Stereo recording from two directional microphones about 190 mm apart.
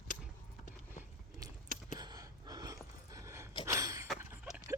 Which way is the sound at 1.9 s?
20° right (ahead or behind).